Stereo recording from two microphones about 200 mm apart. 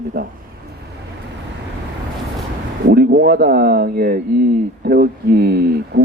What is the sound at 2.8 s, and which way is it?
Speech, 50° right (ahead or behind).